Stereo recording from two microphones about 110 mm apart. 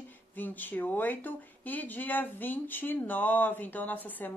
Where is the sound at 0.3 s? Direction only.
15° left (ahead or behind).